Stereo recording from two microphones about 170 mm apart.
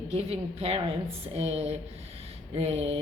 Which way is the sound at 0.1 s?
35° right (ahead or behind).